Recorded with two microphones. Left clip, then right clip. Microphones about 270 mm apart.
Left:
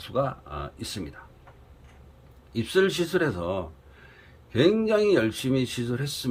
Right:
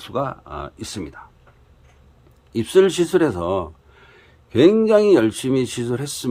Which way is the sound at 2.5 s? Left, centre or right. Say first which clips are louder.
Right 8 dB; right.